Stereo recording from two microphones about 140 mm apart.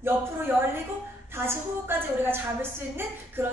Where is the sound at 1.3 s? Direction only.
15° right (ahead or behind).